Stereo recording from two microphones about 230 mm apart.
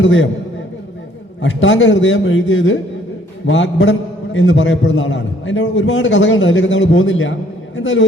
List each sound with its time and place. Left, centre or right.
0.0 s a man's voice: left
1.4 s a man's voice: left